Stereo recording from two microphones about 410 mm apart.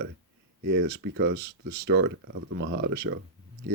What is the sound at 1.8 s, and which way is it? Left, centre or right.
Speech, right.